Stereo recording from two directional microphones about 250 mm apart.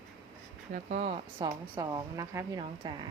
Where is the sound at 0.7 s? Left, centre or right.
Right.